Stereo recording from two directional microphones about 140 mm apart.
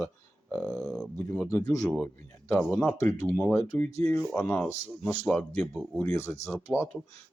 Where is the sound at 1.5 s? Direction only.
25° left (ahead or behind).